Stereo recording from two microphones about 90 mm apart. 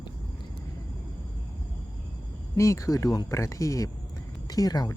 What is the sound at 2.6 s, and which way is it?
Speech, 35° left (ahead or behind).